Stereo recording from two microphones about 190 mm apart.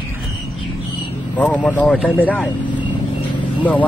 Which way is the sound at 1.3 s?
5° left (ahead or behind).